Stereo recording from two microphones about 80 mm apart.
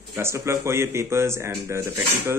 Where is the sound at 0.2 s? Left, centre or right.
Right.